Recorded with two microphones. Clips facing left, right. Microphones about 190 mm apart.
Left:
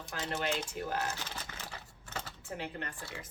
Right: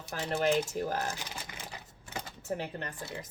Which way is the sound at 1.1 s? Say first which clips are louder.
Right 1 dB; 10° right (ahead or behind).